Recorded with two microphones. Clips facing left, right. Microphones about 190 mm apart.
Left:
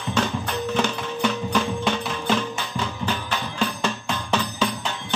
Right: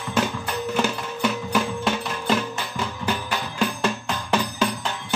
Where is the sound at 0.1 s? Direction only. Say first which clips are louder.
Even; 5° right (ahead or behind).